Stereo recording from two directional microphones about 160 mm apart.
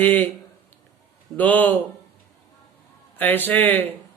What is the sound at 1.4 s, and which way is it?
Speech, 10° left (ahead or behind).